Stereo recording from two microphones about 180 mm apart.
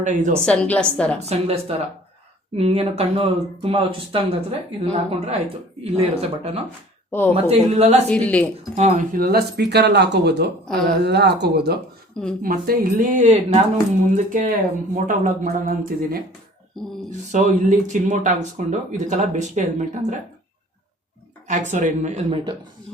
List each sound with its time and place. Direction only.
0.0 s speech: 45° right (ahead or behind)
0.4 s a woman's voice: 5° left (ahead or behind)
1.3 s speech: 35° right (ahead or behind)
7.1 s speech: 10° left (ahead or behind)
7.4 s speech: 35° right (ahead or behind)
8.1 s speech: 5° left (ahead or behind)
8.7 s speech: 40° right (ahead or behind)
9.1 s speech: 55° right (ahead or behind)
12.4 s speech: 50° right (ahead or behind)
17.3 s speech: 45° right (ahead or behind)
21.4 s speech: 45° right (ahead or behind)